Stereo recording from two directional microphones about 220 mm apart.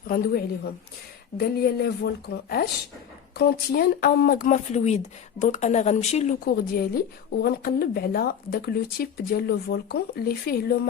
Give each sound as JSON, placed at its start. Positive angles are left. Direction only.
{"t": 0.1, "sound": "a woman's voice", "side_deg": 45}
{"t": 6.4, "sound": "a woman's voice", "side_deg": 45}